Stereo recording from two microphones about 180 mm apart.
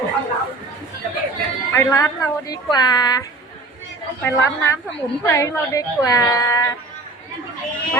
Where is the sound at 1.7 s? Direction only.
20° left (ahead or behind).